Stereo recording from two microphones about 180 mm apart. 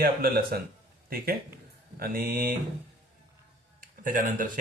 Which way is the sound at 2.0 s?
55° right (ahead or behind).